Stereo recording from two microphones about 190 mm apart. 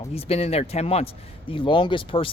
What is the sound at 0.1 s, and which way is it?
Speech, 30° left (ahead or behind).